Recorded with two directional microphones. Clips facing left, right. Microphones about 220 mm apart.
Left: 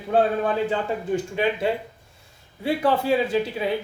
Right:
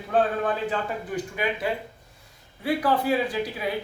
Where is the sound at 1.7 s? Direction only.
25° left (ahead or behind).